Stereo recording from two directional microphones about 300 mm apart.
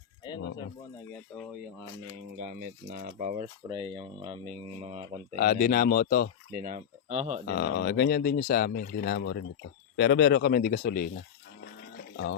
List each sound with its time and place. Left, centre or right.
0.3 s a sound: centre
2.0 s speech: right
5.4 s speech: left
6.5 s speech: right
7.4 s speech: left
12.1 s speech: left